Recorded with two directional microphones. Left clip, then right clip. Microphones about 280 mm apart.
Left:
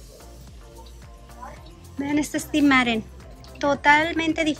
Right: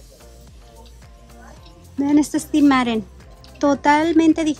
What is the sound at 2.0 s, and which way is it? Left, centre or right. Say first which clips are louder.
Speech: right 7 dB; centre.